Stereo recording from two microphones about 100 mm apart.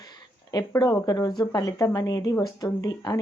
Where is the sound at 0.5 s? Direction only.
45° left (ahead or behind).